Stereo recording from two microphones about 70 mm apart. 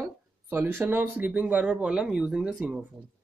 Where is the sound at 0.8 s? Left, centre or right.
Right.